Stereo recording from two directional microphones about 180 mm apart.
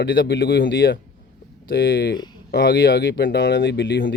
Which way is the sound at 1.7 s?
70° left (ahead or behind).